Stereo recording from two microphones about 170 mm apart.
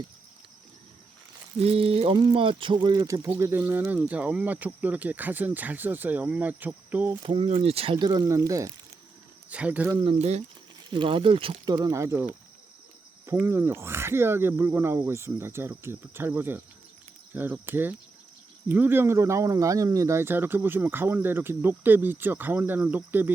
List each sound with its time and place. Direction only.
1.5 s speech: 35° right (ahead or behind); by 7.1 s 10° right (ahead or behind)
7.2 s speech: 30° right (ahead or behind)
9.5 s speech: 10° right (ahead or behind)
9.9 s speech: 30° right (ahead or behind)
10.9 s speech: 30° right (ahead or behind); by 12.3 s 15° right (ahead or behind)
13.3 s speech: 15° right (ahead or behind)